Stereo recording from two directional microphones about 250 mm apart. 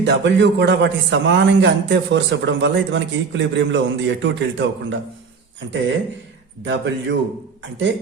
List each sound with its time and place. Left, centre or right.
0.0 s a man's voice: right
6.7 s a man's voice: right